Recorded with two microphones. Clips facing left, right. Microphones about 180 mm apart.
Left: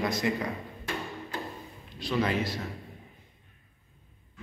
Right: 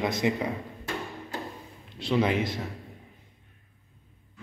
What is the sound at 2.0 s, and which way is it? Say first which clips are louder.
Speech: right 3 dB; 20° right (ahead or behind).